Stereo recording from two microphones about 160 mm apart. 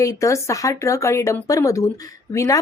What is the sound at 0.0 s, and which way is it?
Speech, 20° left (ahead or behind).